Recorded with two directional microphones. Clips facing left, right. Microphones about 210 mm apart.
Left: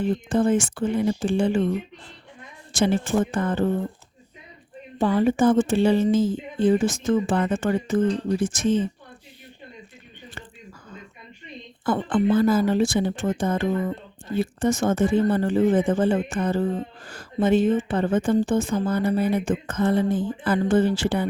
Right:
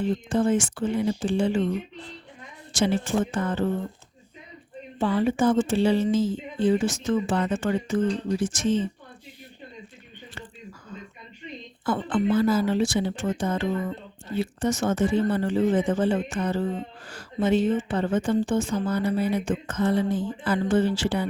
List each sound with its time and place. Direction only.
0.3 s speech: 55° left (ahead or behind)
2.7 s speech: 55° left (ahead or behind)
4.9 s speech: 45° left (ahead or behind)
11.9 s speech: 55° left (ahead or behind)